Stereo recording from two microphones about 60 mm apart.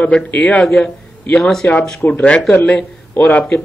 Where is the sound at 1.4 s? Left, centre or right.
Centre.